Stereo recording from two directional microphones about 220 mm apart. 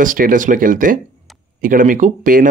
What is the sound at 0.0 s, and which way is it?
Speech, 35° right (ahead or behind).